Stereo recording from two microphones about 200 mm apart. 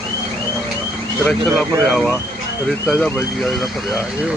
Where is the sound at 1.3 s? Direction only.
5° left (ahead or behind).